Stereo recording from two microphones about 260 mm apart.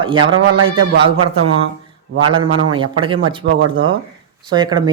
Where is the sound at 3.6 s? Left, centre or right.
Right.